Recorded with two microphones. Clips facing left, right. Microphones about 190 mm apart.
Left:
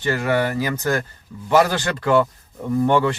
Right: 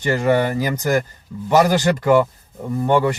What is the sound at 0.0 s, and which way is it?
Speech, 15° right (ahead or behind).